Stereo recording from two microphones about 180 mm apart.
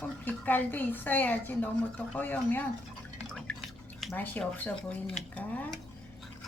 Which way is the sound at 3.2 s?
5° left (ahead or behind).